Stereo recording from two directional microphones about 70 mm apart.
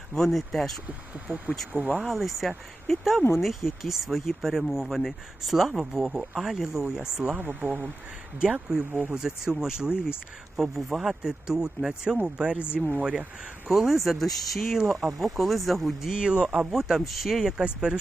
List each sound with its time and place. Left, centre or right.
0.1 s speech: centre
0.9 s speech: centre
2.0 s speech: centre
7.3 s speech: right
8.4 s speech: centre
9.1 s speech: centre
13.7 s speech: centre
16.7 s speech: centre